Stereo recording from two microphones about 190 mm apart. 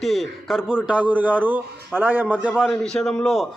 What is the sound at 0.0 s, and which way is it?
A man's voice, centre (ahead or behind).